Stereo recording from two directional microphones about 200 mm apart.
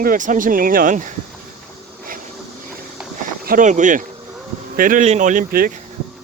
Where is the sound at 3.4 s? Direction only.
40° right (ahead or behind).